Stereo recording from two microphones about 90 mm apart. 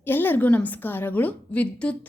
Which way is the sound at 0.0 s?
20° left (ahead or behind).